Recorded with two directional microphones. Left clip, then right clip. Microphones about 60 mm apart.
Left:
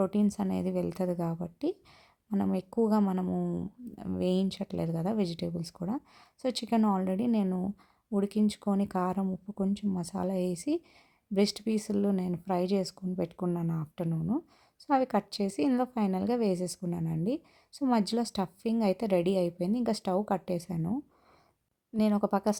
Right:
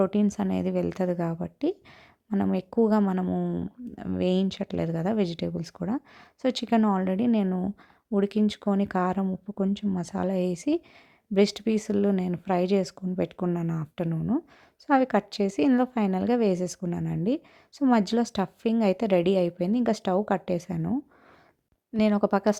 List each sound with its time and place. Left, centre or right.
0.0 s a woman's voice: right
3.8 s a woman's voice: right